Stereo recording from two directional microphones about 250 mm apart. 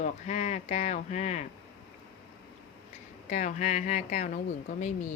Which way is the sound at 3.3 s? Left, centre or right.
Left.